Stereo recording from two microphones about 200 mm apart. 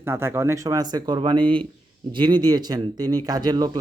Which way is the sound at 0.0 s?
10° right (ahead or behind).